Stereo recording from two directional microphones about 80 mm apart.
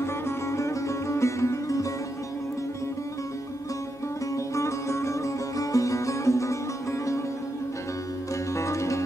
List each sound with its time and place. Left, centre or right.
0.0 s music: left
4.6 s music: left
8.5 s music: left